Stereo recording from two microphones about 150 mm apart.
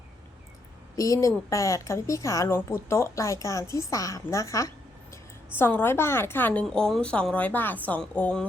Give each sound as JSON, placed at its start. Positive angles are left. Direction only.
{"t": 0.9, "sound": "a woman's voice", "side_deg": 20}